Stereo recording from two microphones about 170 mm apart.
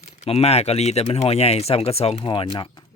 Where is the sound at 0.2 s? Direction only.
40° left (ahead or behind).